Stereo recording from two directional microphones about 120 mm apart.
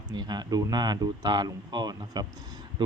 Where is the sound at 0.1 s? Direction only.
35° right (ahead or behind).